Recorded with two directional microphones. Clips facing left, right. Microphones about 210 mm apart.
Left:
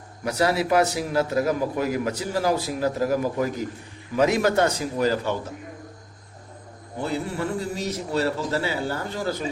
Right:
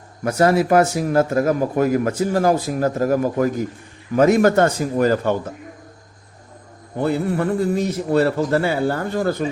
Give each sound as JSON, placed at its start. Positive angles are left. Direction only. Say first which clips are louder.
{"t": 0.3, "sound": "a man's voice", "louder": "right 6 dB", "side_deg": -50}
{"t": 7.0, "sound": "a man's voice", "louder": "right 7 dB", "side_deg": -55}